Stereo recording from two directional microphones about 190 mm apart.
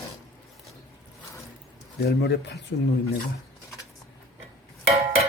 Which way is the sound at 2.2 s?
65° left (ahead or behind).